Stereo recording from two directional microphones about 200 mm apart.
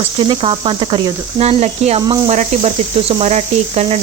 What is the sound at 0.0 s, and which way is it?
Speech, 25° right (ahead or behind).